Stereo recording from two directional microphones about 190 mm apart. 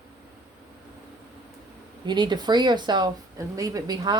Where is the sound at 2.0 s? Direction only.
25° right (ahead or behind).